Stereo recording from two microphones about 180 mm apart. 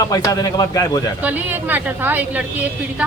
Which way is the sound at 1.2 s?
10° right (ahead or behind).